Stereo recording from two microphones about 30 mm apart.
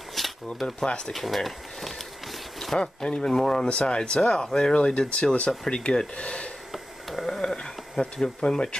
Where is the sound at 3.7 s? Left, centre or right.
Left.